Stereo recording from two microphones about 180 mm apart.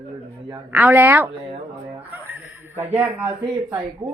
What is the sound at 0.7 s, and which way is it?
Speech, 10° right (ahead or behind).